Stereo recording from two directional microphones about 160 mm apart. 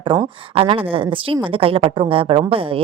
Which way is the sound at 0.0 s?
30° right (ahead or behind).